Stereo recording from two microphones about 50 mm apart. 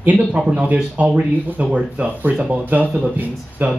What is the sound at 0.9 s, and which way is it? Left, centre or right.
Speech, right.